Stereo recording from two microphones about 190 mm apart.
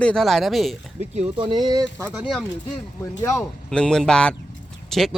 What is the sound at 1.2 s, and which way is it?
Speech, 25° right (ahead or behind).